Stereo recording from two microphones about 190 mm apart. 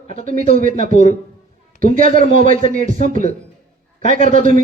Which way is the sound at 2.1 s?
45° right (ahead or behind).